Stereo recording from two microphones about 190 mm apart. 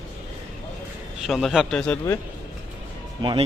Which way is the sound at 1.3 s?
Centre (ahead or behind).